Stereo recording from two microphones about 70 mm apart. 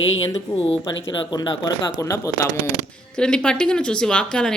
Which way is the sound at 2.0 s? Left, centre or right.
Left.